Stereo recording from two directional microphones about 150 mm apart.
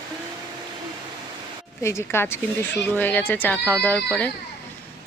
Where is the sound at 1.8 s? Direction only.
20° left (ahead or behind).